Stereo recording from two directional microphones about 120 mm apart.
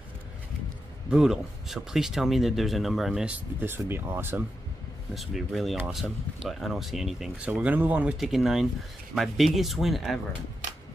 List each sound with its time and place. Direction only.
1.1 s speech: 5° right (ahead or behind)
3.6 s speech: 20° right (ahead or behind)
5.1 s speech: centre (ahead or behind)